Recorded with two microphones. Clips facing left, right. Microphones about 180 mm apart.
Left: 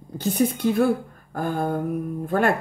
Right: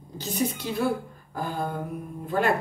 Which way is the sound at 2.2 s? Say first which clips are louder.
Left 3 dB; 50° left (ahead or behind).